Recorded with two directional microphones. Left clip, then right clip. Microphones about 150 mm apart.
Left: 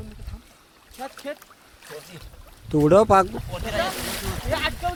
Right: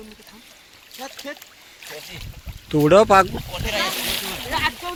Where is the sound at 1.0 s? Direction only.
50° left (ahead or behind).